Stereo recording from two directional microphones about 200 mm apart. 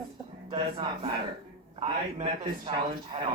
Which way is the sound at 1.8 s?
25° right (ahead or behind).